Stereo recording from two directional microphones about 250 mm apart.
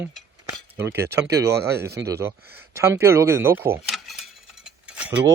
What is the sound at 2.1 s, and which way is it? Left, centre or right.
Speech, centre.